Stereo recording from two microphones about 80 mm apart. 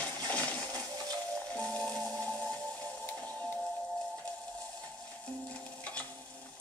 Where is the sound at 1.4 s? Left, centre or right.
Centre.